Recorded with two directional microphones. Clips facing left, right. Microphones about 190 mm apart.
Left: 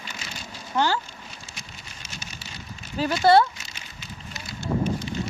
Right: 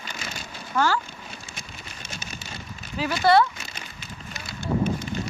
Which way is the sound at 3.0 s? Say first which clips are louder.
Left 1 dB; 30° left (ahead or behind).